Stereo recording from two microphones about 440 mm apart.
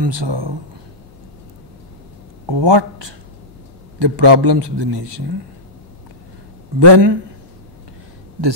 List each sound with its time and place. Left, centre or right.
0.0 s a man's voice: right
2.5 s a man's voice: right
6.8 s a man's voice: right